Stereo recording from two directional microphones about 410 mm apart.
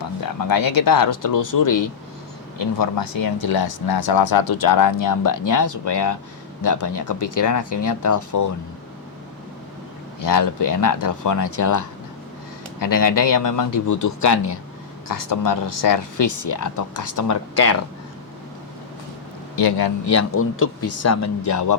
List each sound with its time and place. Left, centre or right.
0.0 s speech: left
10.2 s speech: left
19.5 s a man's voice: left
20.1 s speech: left